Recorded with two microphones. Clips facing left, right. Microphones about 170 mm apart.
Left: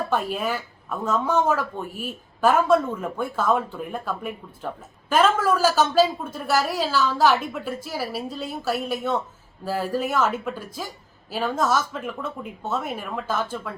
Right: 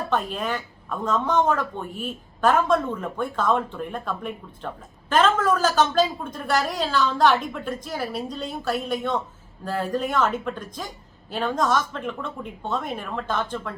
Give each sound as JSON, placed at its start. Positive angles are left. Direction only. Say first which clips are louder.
{"t": 0.1, "sound": "speech", "louder": "left 1 dB", "side_deg": 10}